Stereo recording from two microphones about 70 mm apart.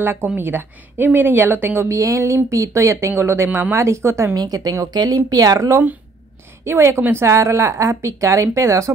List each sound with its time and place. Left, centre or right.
0.0 s a woman's voice: right
2.0 s speech: right
4.4 s speech: right
6.6 s speech: right
7.2 s speech: right